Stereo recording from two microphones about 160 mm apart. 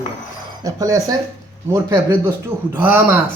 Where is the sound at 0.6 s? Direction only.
20° right (ahead or behind).